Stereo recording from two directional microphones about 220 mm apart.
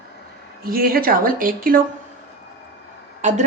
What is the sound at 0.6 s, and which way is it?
A woman's voice, 40° right (ahead or behind).